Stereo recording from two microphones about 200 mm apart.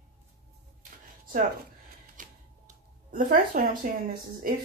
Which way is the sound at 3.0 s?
40° right (ahead or behind).